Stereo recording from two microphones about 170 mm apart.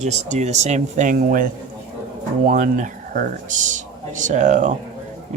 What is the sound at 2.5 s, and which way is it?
Speech, 50° right (ahead or behind).